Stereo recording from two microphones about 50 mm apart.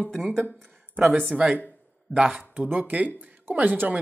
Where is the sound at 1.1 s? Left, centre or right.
Right.